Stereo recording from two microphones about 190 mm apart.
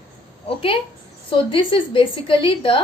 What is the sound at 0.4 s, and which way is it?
A woman's voice, 30° left (ahead or behind).